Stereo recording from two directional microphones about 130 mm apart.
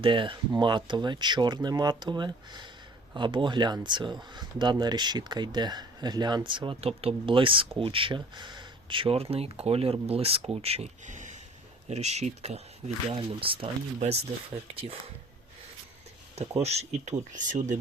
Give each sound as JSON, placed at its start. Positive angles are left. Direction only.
{"t": 0.0, "sound": "speech", "side_deg": -40}
{"t": 11.0, "sound": "a sound", "side_deg": -70}
{"t": 11.9, "sound": "speech", "side_deg": -55}
{"t": 13.1, "sound": "speech", "side_deg": -40}
{"t": 16.3, "sound": "speech", "side_deg": -55}